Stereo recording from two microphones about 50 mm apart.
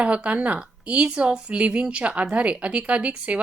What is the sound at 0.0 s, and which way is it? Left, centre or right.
Speech, right.